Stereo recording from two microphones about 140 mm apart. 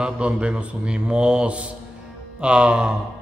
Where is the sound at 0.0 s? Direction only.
10° right (ahead or behind).